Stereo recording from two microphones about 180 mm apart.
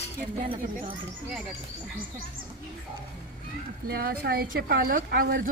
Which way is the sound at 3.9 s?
60° right (ahead or behind).